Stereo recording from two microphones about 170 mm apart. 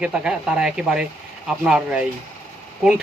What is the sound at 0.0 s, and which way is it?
Speech, 5° right (ahead or behind).